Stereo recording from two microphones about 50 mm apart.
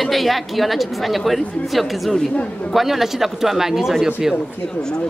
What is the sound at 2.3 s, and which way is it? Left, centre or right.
Speech, left.